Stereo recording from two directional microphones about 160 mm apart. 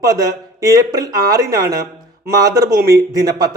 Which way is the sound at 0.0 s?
20° right (ahead or behind).